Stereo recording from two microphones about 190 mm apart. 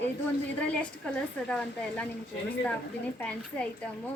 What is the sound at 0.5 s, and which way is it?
A woman's voice, 5° left (ahead or behind).